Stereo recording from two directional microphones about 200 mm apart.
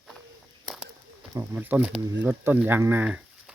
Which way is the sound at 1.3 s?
10° right (ahead or behind).